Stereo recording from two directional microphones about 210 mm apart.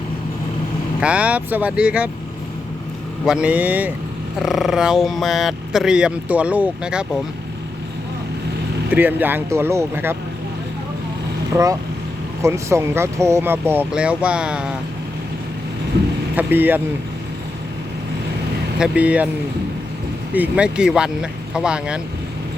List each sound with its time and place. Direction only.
1.0 s speech: 5° right (ahead or behind)
3.2 s speech: 5° right (ahead or behind)
8.9 s speech: 10° right (ahead or behind)
11.5 s speech: 15° right (ahead or behind)
16.3 s speech: 10° right (ahead or behind)
18.8 s speech: 5° right (ahead or behind)
20.3 s speech: 5° right (ahead or behind)